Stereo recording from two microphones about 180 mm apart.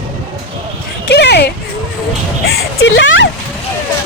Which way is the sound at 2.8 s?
90° left.